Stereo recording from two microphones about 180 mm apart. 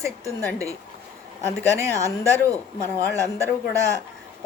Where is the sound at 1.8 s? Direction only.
15° right (ahead or behind).